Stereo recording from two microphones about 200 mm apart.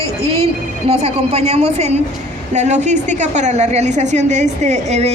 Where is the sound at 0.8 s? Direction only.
30° right (ahead or behind).